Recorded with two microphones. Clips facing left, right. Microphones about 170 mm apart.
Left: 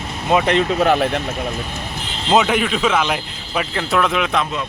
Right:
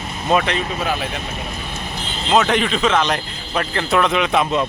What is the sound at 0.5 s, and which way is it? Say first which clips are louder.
Speech: left 7 dB; 60° left (ahead or behind).